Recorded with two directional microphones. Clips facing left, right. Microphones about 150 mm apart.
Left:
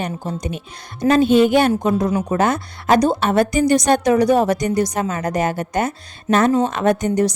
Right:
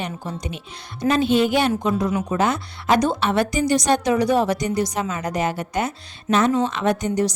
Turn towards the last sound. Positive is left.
turn(degrees=50)  # may be behind; listen again after turning